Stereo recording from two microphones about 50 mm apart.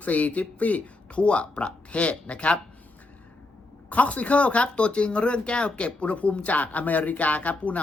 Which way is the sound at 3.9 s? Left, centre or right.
Left.